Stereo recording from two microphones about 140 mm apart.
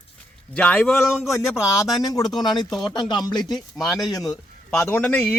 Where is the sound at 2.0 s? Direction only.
25° left (ahead or behind).